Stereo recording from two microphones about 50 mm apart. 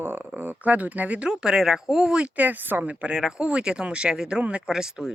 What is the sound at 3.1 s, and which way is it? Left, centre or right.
Speech, centre.